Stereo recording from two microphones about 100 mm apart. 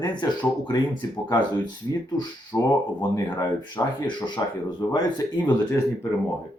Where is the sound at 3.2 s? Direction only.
45° left (ahead or behind).